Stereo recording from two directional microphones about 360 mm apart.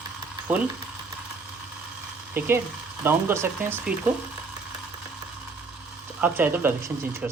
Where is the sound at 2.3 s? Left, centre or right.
Centre.